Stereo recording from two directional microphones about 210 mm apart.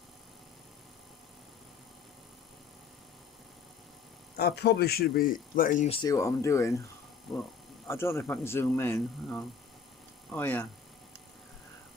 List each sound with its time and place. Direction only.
4.4 s speech: 50° left (ahead or behind)
6.0 s speech: 15° left (ahead or behind)
7.9 s speech: 10° left (ahead or behind)